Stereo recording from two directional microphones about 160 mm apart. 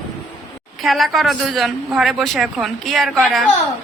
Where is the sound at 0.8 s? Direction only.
Centre (ahead or behind).